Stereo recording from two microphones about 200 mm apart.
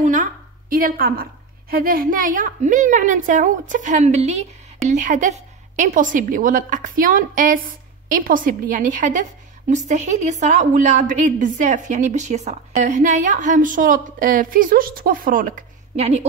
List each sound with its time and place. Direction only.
0.0 s a woman's voice: 40° right (ahead or behind)